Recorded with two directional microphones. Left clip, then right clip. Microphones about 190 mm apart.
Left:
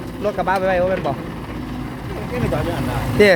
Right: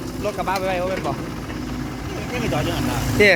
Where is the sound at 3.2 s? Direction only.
25° left (ahead or behind).